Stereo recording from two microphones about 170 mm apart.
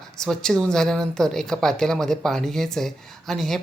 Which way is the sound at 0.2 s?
5° left (ahead or behind).